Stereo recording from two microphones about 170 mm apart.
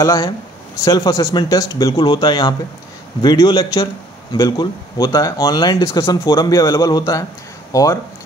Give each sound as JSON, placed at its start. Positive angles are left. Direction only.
{"t": 0.0, "sound": "a man's voice", "side_deg": 20}